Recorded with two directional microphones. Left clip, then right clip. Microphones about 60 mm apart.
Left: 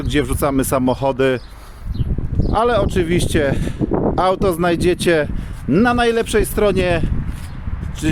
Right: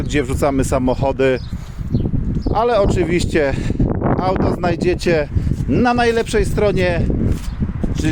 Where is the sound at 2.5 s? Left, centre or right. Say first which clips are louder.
Right 1 dB; left.